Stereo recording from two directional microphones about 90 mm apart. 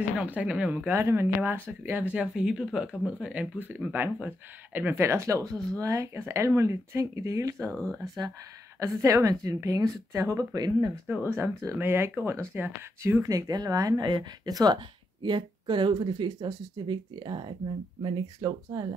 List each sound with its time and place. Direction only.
0.2 s speech: 15° right (ahead or behind)
0.9 s speech: 30° right (ahead or behind)
2.1 s a woman's voice: 10° right (ahead or behind); by 7.5 s 35° right (ahead or behind)
7.7 s speech: 5° left (ahead or behind)
8.7 s a woman's voice: 35° right (ahead or behind)
11.1 s speech: 25° right (ahead or behind)
13.5 s speech: 45° right (ahead or behind)
15.2 s speech: 60° right (ahead or behind)